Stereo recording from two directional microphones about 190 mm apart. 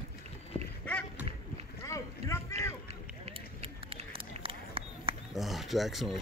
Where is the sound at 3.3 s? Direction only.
30° right (ahead or behind).